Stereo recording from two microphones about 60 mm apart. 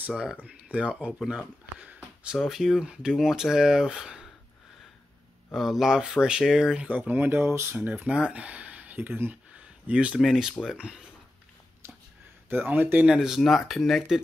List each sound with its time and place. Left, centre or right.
0.7 s speech: right
1.3 s a sound: right
2.4 s speech: centre
5.5 s speech: centre
7.0 s speech: right
8.1 s speech: centre
9.6 s a sound: right
10.2 s speech: centre
12.4 s speech: right
13.0 s speech: centre
13.4 s speech: centre